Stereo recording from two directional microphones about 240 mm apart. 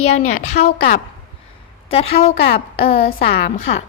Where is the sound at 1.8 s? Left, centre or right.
Left.